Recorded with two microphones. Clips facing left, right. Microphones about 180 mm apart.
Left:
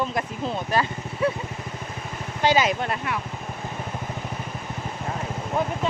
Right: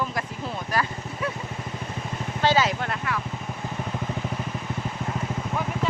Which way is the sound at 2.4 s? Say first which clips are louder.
Left 2 dB; 15° left (ahead or behind).